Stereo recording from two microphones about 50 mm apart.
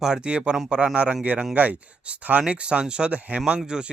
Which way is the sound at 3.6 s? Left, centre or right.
Centre.